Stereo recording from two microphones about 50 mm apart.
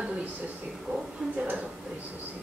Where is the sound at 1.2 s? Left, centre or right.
Right.